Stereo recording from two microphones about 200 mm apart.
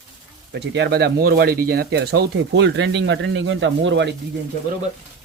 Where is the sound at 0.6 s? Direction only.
60° right (ahead or behind).